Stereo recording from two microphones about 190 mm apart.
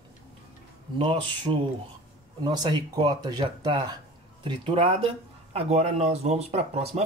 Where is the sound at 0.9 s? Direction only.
25° right (ahead or behind).